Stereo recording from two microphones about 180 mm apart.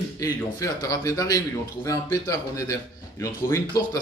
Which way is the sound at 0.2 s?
20° left (ahead or behind).